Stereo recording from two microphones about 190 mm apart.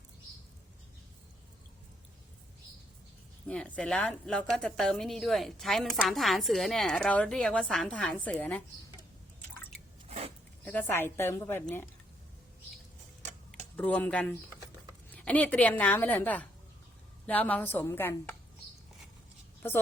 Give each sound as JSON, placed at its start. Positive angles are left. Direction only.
{"t": 3.4, "sound": "a woman's voice", "side_deg": 5}
{"t": 10.1, "sound": "a sound", "side_deg": -35}
{"t": 10.6, "sound": "a woman's voice", "side_deg": 10}
{"t": 13.7, "sound": "a woman's voice", "side_deg": 10}
{"t": 19.6, "sound": "a woman's voice", "side_deg": 10}